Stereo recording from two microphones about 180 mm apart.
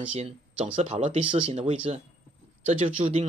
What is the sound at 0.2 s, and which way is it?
Speech, 35° right (ahead or behind).